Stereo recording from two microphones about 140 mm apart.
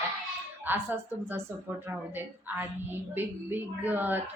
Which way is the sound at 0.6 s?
15° right (ahead or behind).